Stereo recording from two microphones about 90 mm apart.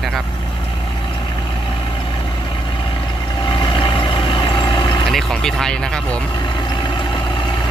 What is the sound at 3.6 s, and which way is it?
Vehicle, 65° left (ahead or behind).